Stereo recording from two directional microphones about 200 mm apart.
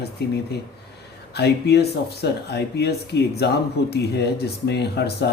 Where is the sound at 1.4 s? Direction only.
55° left (ahead or behind).